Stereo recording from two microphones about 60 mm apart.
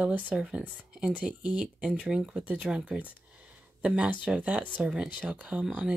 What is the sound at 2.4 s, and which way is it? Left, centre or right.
Speech, right.